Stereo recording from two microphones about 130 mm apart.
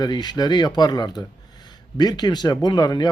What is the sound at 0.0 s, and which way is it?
A man's voice, 35° left (ahead or behind).